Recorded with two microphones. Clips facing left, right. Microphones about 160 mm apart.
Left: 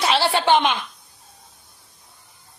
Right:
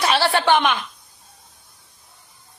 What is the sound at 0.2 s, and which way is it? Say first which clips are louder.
Speech: even; 15° left (ahead or behind).